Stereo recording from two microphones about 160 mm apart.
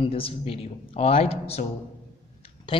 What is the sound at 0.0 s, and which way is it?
Speech, 35° left (ahead or behind).